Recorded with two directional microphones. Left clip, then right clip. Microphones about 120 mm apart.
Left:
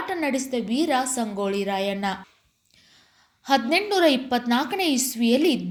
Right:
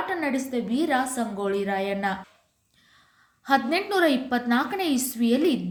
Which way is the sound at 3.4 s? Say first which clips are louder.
Left 2 dB; 25° left (ahead or behind).